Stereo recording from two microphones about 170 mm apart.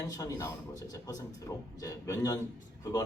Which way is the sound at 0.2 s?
20° left (ahead or behind).